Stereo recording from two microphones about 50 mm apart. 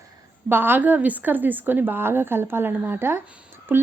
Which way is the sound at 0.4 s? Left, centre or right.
Right.